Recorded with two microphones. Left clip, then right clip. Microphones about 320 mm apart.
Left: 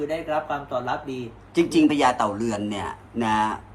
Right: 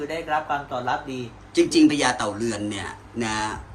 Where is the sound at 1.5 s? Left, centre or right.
Centre.